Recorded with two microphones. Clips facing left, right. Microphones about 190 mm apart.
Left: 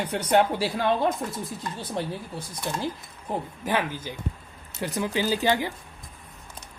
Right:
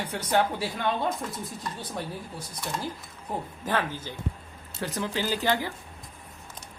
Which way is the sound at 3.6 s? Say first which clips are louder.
Left 1 dB; 10° left (ahead or behind).